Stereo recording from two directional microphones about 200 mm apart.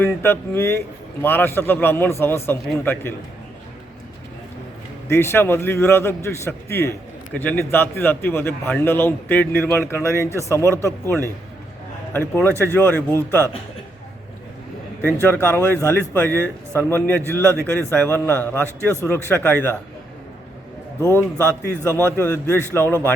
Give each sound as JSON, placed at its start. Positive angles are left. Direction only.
{"t": 0.0, "sound": "a man's voice", "side_deg": 10}
{"t": 5.0, "sound": "a man's voice", "side_deg": 15}
{"t": 15.0, "sound": "a man's voice", "side_deg": 10}
{"t": 21.2, "sound": "a man's voice", "side_deg": 10}